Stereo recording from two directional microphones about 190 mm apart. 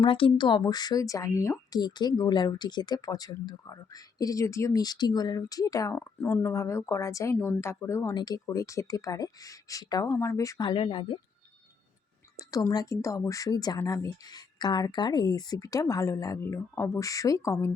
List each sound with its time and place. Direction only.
0.0 s speech: 25° left (ahead or behind)
12.4 s speech: 20° left (ahead or behind)